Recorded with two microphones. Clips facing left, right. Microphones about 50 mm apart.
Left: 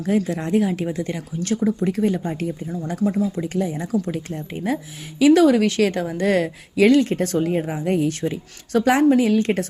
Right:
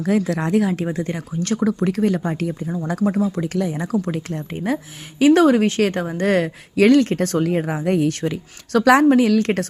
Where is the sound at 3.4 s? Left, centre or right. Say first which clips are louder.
Right 1 dB; right.